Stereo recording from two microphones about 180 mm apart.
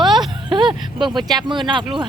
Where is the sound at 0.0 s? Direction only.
Centre (ahead or behind).